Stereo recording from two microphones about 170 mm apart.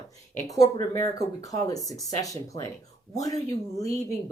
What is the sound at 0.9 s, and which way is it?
A woman's voice, 20° left (ahead or behind).